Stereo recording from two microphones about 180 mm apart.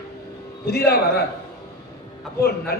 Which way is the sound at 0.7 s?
60° left (ahead or behind).